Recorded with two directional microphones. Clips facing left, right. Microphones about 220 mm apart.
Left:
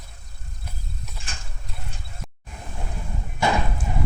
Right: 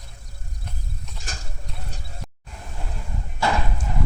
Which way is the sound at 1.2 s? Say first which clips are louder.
Right 3 dB; 40° right (ahead or behind).